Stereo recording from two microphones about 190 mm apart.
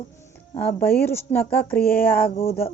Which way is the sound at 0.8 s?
10° left (ahead or behind).